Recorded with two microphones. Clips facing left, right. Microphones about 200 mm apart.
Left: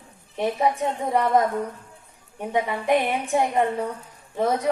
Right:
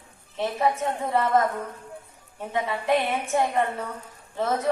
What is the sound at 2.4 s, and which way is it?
A man's voice, 15° left (ahead or behind).